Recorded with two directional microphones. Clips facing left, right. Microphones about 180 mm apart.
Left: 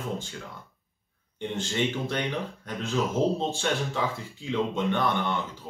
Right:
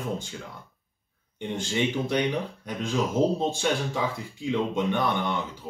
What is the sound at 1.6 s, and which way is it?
Speech, 15° right (ahead or behind).